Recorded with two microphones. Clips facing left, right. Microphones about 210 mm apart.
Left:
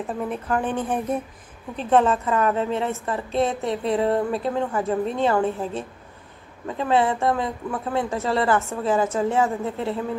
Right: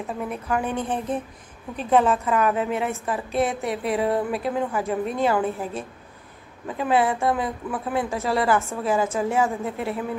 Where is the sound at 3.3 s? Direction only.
25° left (ahead or behind).